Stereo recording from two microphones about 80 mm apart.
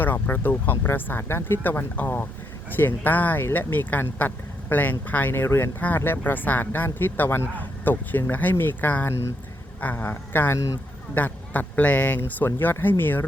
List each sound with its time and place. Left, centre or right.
0.0 s speech: left